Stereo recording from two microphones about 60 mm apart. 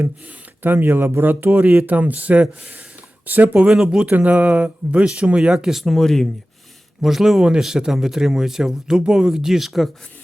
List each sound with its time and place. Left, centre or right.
0.0 s speech: right
3.7 s speech: centre
4.0 s speech: right
5.5 s speech: centre
7.0 s speech: centre